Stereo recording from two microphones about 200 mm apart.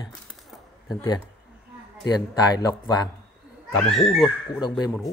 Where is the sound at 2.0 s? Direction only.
20° left (ahead or behind).